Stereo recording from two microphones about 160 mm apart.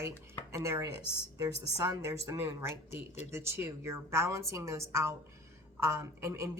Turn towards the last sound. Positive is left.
turn(degrees=-20)  # may be behind; listen again after turning